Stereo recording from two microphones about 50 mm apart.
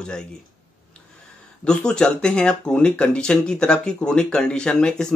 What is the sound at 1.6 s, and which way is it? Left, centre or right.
Speech, centre.